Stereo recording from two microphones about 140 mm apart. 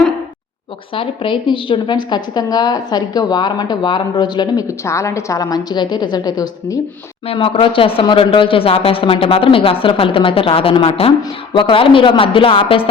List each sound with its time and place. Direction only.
0.9 s speech: 35° left (ahead or behind)
4.9 s a woman's voice: 20° left (ahead or behind)
7.3 s speech: 40° left (ahead or behind)